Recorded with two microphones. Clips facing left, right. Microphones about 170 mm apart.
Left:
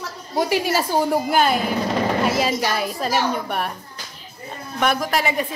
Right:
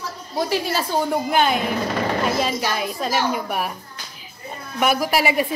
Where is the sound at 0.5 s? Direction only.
10° left (ahead or behind).